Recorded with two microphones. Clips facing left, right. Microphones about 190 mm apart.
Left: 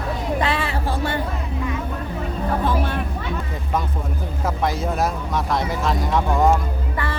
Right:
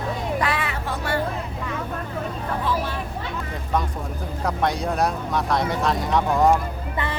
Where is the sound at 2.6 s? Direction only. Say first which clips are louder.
Left 1 dB; 55° left (ahead or behind).